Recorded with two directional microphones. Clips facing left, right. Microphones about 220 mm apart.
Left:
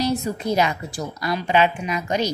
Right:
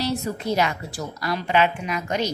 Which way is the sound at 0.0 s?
15° left (ahead or behind).